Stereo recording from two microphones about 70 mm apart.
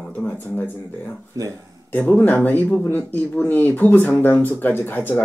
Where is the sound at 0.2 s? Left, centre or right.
Left.